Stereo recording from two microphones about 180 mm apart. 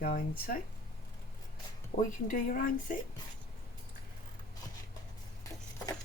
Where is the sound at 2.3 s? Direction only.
50° left (ahead or behind).